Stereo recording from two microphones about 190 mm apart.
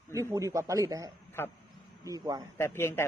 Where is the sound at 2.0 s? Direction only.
20° right (ahead or behind).